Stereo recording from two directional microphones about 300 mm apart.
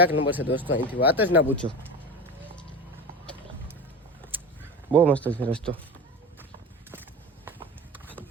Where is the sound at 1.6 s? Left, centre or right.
Centre.